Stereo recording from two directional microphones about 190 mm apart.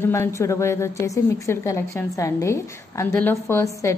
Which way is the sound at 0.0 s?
15° left (ahead or behind).